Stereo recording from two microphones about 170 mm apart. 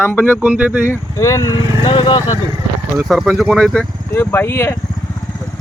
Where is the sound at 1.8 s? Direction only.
30° left (ahead or behind).